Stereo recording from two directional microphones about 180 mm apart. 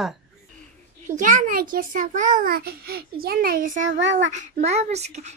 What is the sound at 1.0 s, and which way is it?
A child's voice, 45° right (ahead or behind).